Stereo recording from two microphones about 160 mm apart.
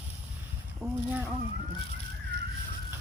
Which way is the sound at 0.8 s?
15° right (ahead or behind).